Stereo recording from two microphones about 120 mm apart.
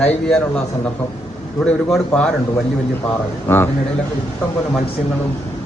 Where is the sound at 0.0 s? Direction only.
5° left (ahead or behind).